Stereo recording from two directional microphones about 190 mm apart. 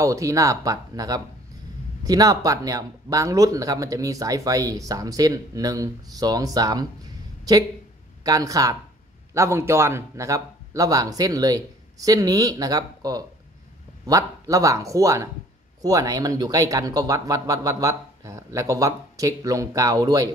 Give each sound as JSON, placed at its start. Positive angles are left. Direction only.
{"t": 0.0, "sound": "speech", "side_deg": -15}
{"t": 8.2, "sound": "speech", "side_deg": -20}